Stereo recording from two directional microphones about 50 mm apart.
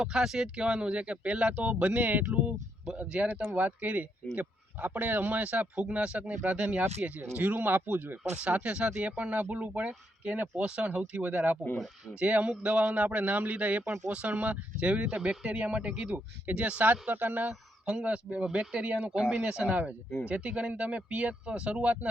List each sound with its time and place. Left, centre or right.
0.0 s speech: centre; by 2.2 s right
2.3 s speech: right
7.2 s speech: right
8.4 s speech: right
17.5 s a man's voice: centre